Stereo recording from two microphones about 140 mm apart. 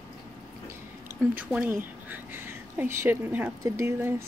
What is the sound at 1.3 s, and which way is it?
Speech, 10° right (ahead or behind).